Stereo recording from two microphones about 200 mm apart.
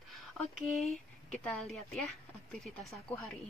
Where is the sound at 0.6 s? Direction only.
Centre (ahead or behind).